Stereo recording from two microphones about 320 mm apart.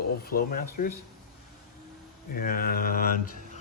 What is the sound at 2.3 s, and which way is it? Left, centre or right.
Speech, left.